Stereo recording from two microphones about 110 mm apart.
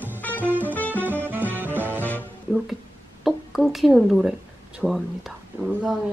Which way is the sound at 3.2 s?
Centre (ahead or behind).